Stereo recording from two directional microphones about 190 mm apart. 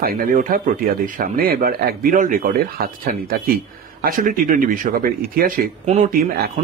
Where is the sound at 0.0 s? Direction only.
50° right (ahead or behind).